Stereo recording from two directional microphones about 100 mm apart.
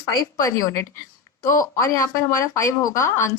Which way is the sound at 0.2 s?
35° left (ahead or behind).